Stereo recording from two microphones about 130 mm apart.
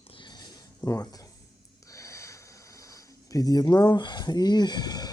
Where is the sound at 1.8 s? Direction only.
25° left (ahead or behind).